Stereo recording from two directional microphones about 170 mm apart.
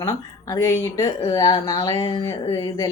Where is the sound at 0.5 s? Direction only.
15° left (ahead or behind).